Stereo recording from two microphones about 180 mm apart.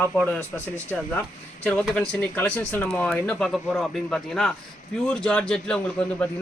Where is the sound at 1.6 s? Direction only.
10° left (ahead or behind).